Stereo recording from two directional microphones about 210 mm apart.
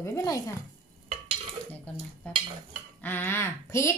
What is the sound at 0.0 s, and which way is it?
Speech, 15° left (ahead or behind).